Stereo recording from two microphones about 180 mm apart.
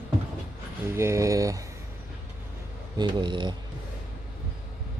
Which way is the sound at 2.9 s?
25° right (ahead or behind).